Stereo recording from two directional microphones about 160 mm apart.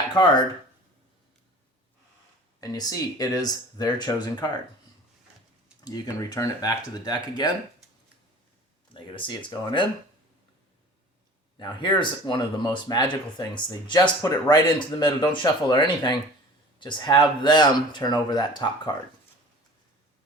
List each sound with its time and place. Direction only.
0.1 s speech: 30° left (ahead or behind)
2.6 s speech: 25° left (ahead or behind)
5.8 s speech: 25° left (ahead or behind)
8.9 s speech: 30° left (ahead or behind)
11.6 s speech: 30° left (ahead or behind)